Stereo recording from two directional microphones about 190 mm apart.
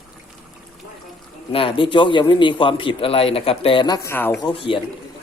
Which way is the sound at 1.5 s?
30° left (ahead or behind).